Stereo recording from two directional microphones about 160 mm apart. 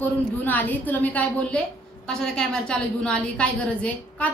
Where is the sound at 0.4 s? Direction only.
10° left (ahead or behind).